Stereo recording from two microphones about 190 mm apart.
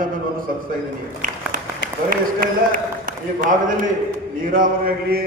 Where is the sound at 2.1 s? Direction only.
45° right (ahead or behind).